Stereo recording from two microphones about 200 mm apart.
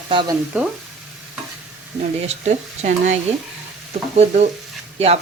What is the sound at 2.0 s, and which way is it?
Speech, 35° right (ahead or behind).